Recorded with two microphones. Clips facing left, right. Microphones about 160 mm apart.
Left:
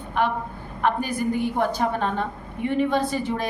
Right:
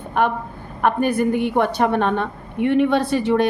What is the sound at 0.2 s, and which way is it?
A woman's voice, 50° right (ahead or behind).